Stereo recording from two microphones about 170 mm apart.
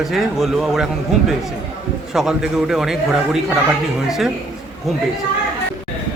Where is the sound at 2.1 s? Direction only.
5° right (ahead or behind).